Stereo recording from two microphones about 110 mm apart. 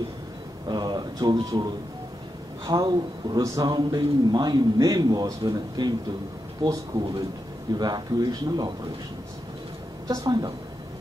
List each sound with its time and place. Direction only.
0.7 s speech: 40° right (ahead or behind)
10.0 s speech: 30° right (ahead or behind)